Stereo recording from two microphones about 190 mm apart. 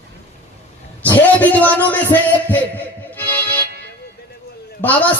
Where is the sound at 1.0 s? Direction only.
10° left (ahead or behind).